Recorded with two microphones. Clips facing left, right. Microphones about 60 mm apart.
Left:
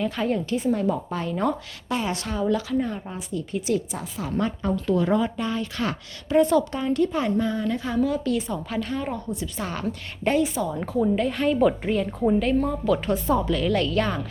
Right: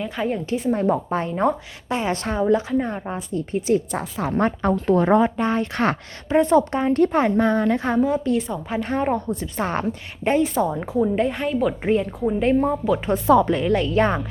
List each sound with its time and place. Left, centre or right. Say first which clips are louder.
0.0 s speech: even; centre
0.5 s speech: right 3 dB; right
6.2 s speech: right 2 dB; right
8.0 s speech: right 3 dB; right
9.8 s speech: right 2 dB; right
10.8 s speech: right 2 dB; centre